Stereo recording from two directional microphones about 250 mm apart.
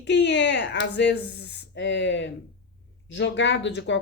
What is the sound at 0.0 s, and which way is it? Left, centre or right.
Speech, left.